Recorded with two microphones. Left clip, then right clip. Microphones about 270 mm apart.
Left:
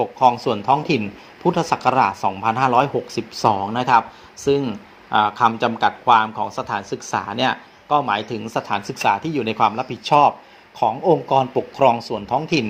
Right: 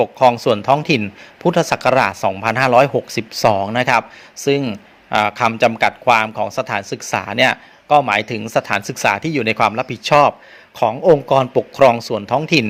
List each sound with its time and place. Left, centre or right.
0.0 s a man's voice: right